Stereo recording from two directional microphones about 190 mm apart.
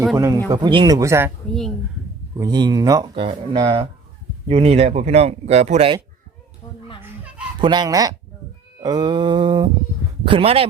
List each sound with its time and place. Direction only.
0.0 s speech: 10° right (ahead or behind)
0.5 s speech: 25° right (ahead or behind)
2.4 s speech: 20° right (ahead or behind)
7.6 s speech: 20° right (ahead or behind)